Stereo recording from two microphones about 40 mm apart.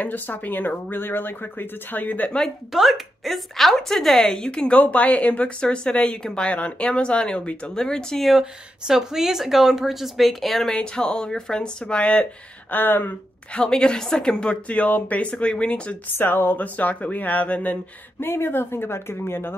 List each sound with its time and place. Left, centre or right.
0.0 s speech: left
2.7 s speech: centre
4.4 s speech: left
4.7 s speech: left; by 8.2 s centre
8.4 s speech: centre
10.8 s speech: left
12.7 s speech: left
13.5 s speech: left
16.2 s speech: left
16.6 s speech: left
18.2 s a woman's voice: left